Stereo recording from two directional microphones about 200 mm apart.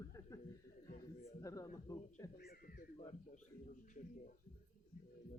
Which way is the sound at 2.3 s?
50° left (ahead or behind).